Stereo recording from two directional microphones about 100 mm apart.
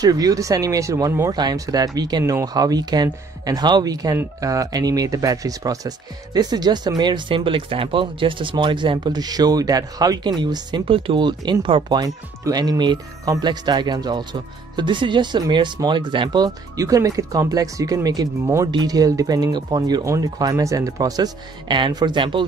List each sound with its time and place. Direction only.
0.0 s speech: 40° right (ahead or behind)
1.3 s speech: 45° right (ahead or behind); by 12.0 s 60° right (ahead or behind)
12.0 s speech: 40° right (ahead or behind); by 22.5 s 55° right (ahead or behind)